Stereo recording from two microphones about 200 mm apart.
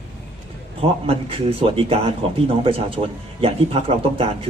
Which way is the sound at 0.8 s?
30° right (ahead or behind).